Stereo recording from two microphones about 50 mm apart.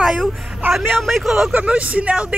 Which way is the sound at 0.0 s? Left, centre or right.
Centre.